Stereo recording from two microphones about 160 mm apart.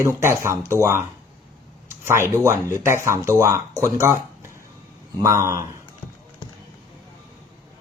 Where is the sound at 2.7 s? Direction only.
15° right (ahead or behind).